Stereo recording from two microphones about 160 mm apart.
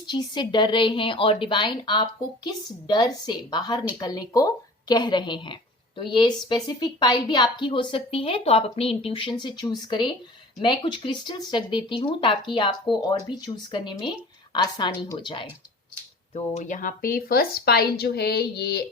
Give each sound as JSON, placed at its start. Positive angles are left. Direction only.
{"t": 0.1, "sound": "a woman's voice", "side_deg": 30}
{"t": 16.3, "sound": "a woman's voice", "side_deg": 50}